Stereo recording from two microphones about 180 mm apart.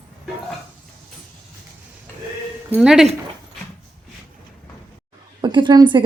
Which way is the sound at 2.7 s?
5° right (ahead or behind).